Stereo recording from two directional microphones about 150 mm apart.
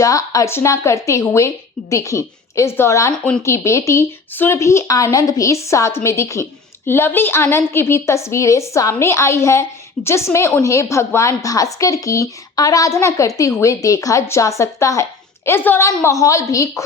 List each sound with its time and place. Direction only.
0.0 s a woman's voice: 25° left (ahead or behind)